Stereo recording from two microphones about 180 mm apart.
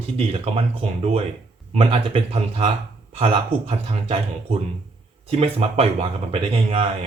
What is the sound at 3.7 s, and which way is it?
Speech, 35° right (ahead or behind).